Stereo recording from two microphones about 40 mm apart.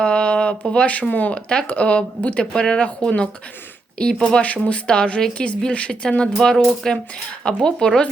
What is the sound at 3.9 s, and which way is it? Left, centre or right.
Speech, left.